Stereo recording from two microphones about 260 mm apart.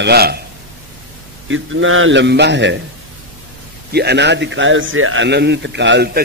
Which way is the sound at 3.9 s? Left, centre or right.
Right.